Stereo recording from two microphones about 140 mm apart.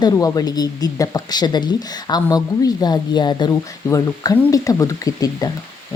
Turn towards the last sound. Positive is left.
turn(degrees=25)  # may be behind; listen again after turning